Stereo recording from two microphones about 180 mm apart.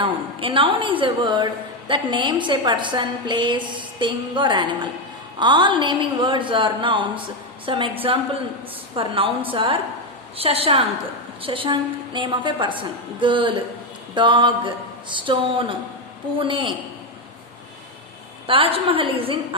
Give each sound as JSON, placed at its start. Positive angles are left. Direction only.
{"t": 0.0, "sound": "a woman's voice", "side_deg": -30}
{"t": 18.4, "sound": "a woman's voice", "side_deg": -30}